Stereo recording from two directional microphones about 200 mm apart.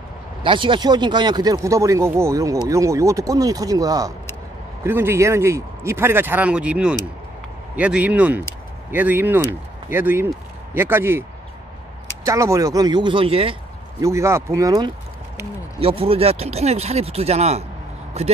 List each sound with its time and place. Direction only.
0.4 s speech: 25° right (ahead or behind)
12.3 s speech: 15° right (ahead or behind)
14.0 s speech: 15° right (ahead or behind)
15.8 s speech: 25° right (ahead or behind)